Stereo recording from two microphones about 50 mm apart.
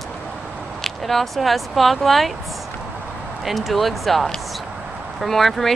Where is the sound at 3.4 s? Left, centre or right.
Centre.